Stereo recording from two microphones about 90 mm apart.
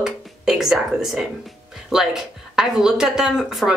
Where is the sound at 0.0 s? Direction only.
5° right (ahead or behind).